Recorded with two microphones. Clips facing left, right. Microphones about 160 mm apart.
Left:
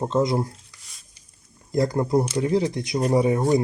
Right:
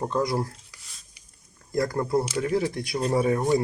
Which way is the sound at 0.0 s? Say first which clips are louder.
Left 4 dB; 20° left (ahead or behind).